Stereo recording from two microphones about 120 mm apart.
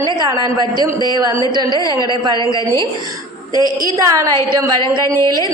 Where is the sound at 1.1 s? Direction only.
35° right (ahead or behind).